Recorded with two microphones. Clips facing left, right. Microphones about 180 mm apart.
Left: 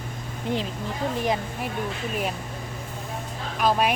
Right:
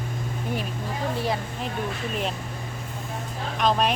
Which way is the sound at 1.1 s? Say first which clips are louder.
Left 2 dB; 20° left (ahead or behind).